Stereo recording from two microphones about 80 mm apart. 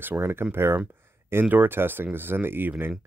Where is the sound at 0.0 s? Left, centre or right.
Right.